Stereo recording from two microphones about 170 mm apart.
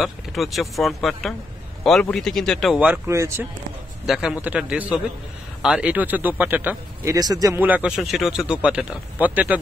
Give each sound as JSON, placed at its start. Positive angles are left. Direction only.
{"t": 0.0, "sound": "speech", "side_deg": 0}
{"t": 3.1, "sound": "speech", "side_deg": -15}
{"t": 4.0, "sound": "speech", "side_deg": 0}
{"t": 7.2, "sound": "speech", "side_deg": -20}